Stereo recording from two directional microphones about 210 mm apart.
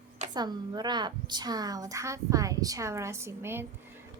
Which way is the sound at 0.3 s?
20° right (ahead or behind).